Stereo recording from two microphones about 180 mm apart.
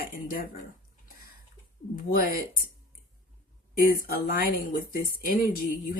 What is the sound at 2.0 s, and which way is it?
Speech, 50° left (ahead or behind).